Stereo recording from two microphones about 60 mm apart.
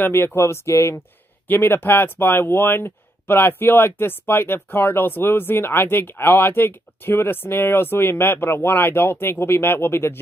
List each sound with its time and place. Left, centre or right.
0.0 s speech: left
1.5 s speech: left